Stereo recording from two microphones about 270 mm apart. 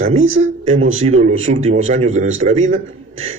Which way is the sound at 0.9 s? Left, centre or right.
Right.